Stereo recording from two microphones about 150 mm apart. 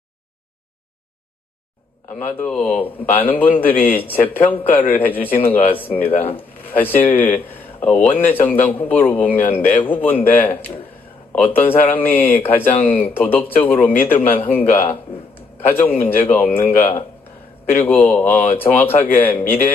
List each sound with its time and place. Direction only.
2.3 s speech: 10° left (ahead or behind)